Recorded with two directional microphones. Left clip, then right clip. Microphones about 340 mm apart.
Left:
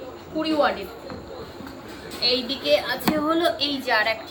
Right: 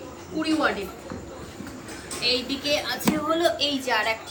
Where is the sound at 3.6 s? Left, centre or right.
Centre.